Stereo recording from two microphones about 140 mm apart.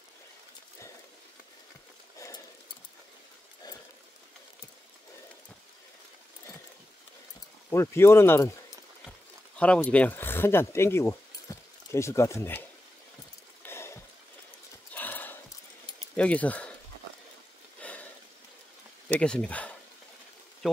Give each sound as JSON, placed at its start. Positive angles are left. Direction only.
{"t": 2.1, "sound": "a sound", "side_deg": 20}
{"t": 7.7, "sound": "speech", "side_deg": 20}
{"t": 9.6, "sound": "speech", "side_deg": 10}
{"t": 13.6, "sound": "a sound", "side_deg": 15}
{"t": 15.0, "sound": "horse", "side_deg": 15}
{"t": 16.2, "sound": "speech", "side_deg": 10}
{"t": 17.7, "sound": "a sound", "side_deg": 10}
{"t": 19.0, "sound": "speech", "side_deg": 5}
{"t": 20.6, "sound": "speech", "side_deg": -5}